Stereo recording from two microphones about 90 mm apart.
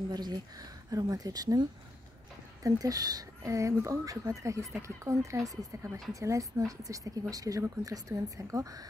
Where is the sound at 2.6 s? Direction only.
40° right (ahead or behind).